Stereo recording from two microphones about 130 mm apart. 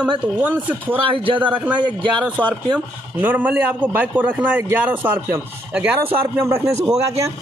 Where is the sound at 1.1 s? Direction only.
40° right (ahead or behind).